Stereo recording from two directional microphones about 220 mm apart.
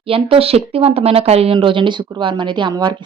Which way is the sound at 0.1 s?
25° right (ahead or behind).